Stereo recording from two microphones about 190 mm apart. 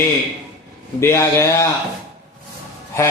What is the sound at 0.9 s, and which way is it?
Speech, 15° left (ahead or behind).